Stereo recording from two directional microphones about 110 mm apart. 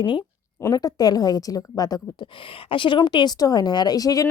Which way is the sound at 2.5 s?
50° left (ahead or behind).